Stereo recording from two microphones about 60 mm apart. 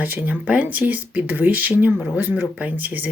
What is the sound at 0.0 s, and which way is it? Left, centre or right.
Speech, right.